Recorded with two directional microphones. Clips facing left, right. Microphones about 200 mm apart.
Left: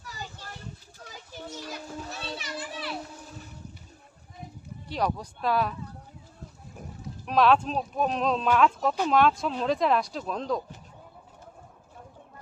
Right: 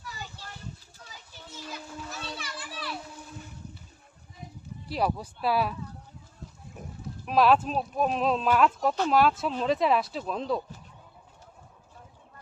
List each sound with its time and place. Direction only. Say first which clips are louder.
0.0 s children playing: left 1 dB; 45° left (ahead or behind)
1.5 s children playing: left 2 dB; 40° left (ahead or behind); by 2.9 s 25° left (ahead or behind)
4.9 s speech: right 1 dB; 5° right (ahead or behind)
7.3 s speech: even; 5° right (ahead or behind)